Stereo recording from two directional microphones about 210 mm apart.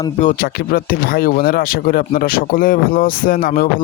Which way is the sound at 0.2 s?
40° left (ahead or behind).